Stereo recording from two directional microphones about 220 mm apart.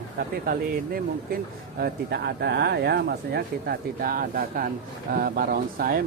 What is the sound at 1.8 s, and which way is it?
Speech, 45° right (ahead or behind).